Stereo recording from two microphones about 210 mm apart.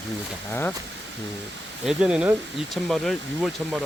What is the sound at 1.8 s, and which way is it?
Speech, 5° right (ahead or behind).